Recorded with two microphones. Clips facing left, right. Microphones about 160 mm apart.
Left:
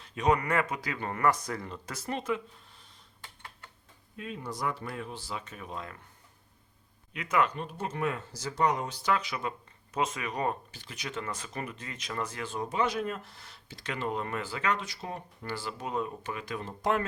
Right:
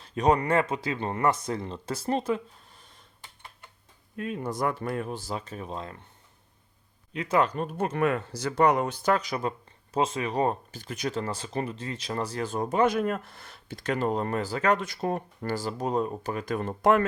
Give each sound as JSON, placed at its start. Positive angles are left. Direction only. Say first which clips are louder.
{"t": 0.0, "sound": "speech", "louder": "right 4 dB", "side_deg": -35}
{"t": 4.2, "sound": "speech", "louder": "right 6 dB", "side_deg": -55}
{"t": 7.1, "sound": "speech", "louder": "right 4 dB", "side_deg": -30}
{"t": 10.7, "sound": "speech", "louder": "right 9 dB", "side_deg": -45}